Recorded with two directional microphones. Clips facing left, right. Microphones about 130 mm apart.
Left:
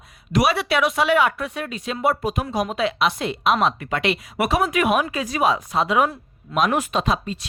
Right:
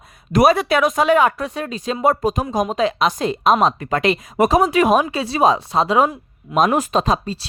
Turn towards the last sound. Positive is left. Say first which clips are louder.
# right 4 dB
turn(degrees=-35)  # may be behind; listen again after turning